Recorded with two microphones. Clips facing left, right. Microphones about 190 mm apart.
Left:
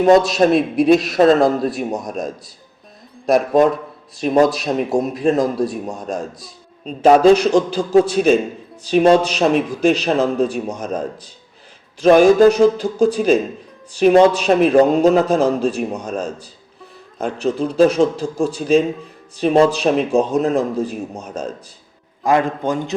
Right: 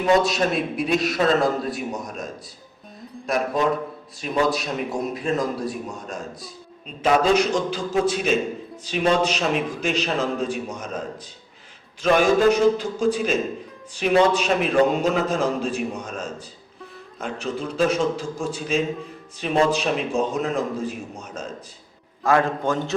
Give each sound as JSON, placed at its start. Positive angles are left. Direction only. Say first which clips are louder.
{"t": 0.3, "sound": "a man's voice", "louder": "left 8 dB", "side_deg": 40}
{"t": 4.2, "sound": "a man's voice", "louder": "left 8 dB", "side_deg": 40}
{"t": 12.0, "sound": "a man's voice", "louder": "left 7 dB", "side_deg": 40}
{"t": 22.2, "sound": "a man's voice", "louder": "left 3 dB", "side_deg": 15}